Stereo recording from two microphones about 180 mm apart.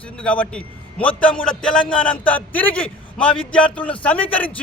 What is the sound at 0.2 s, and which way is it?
A man's voice, 5° left (ahead or behind).